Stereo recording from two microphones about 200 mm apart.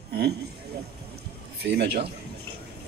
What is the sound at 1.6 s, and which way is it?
Speech, 55° right (ahead or behind).